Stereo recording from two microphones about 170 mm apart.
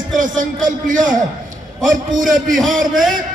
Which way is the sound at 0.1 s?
50° right (ahead or behind).